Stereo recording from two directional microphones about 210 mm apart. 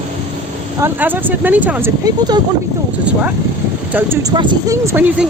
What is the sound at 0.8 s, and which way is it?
Speech, 10° right (ahead or behind).